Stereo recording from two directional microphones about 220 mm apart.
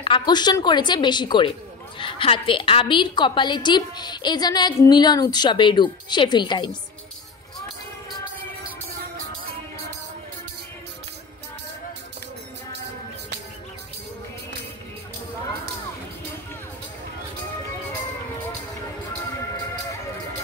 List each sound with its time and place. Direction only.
0.0 s a woman's voice: 20° left (ahead or behind)